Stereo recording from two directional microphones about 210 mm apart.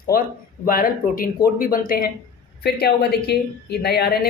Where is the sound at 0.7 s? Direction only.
40° left (ahead or behind).